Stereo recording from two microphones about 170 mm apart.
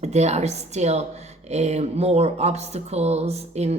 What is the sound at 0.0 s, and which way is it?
Speech, 40° right (ahead or behind).